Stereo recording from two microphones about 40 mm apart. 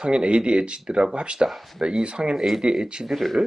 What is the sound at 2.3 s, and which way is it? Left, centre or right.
Speech, centre.